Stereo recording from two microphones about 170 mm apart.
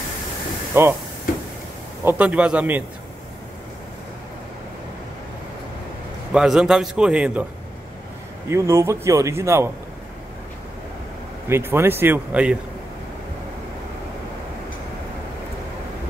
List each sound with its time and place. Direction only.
0.7 s a man's voice: 15° right (ahead or behind)
2.0 s a man's voice: 10° right (ahead or behind)
6.3 s a man's voice: 5° right (ahead or behind)
8.5 s a man's voice: 15° right (ahead or behind)
11.4 s a man's voice: 15° right (ahead or behind)